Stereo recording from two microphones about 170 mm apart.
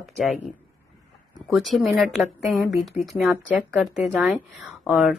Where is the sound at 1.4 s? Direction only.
Centre (ahead or behind).